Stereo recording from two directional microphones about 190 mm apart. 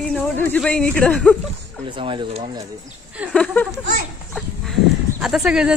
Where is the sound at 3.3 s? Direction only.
5° left (ahead or behind).